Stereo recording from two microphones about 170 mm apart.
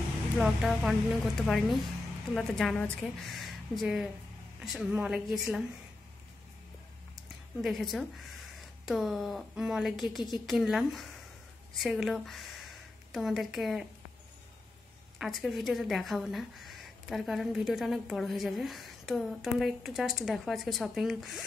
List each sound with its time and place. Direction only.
0.4 s speech: centre (ahead or behind)
7.6 s speech: centre (ahead or behind)
15.1 s speech: centre (ahead or behind)